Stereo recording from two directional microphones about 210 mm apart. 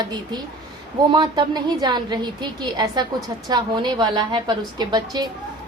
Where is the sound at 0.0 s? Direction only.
20° right (ahead or behind).